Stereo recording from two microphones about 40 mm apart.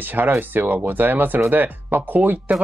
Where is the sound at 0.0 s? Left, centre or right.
Right.